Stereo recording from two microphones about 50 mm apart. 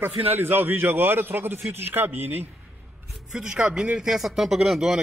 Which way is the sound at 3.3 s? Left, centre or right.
Centre.